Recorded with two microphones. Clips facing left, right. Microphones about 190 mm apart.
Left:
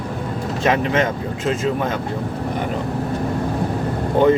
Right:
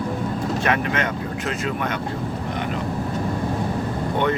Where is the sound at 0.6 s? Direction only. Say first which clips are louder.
Left 7 dB; 25° left (ahead or behind).